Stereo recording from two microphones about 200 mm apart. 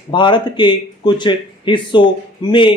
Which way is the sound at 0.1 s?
25° left (ahead or behind).